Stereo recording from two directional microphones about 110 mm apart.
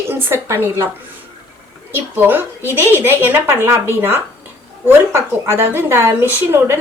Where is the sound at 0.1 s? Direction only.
20° right (ahead or behind).